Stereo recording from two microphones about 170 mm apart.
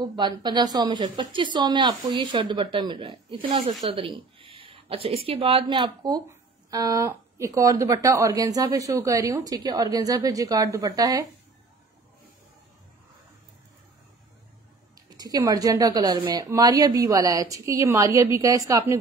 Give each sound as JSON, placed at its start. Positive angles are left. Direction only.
{"t": 0.0, "sound": "a woman's voice", "side_deg": -25}
{"t": 15.0, "sound": "a woman's voice", "side_deg": -20}